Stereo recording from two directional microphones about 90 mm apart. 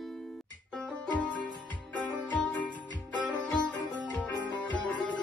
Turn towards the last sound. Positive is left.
turn(degrees=15)  # may be behind; listen again after turning